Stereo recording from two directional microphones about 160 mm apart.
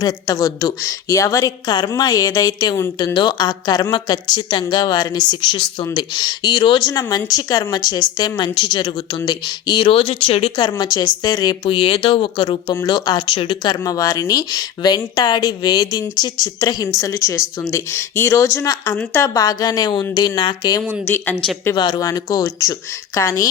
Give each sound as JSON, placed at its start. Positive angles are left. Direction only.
{"t": 0.0, "sound": "a woman's voice", "side_deg": 25}